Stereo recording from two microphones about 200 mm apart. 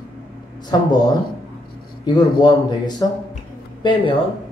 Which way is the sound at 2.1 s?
20° left (ahead or behind).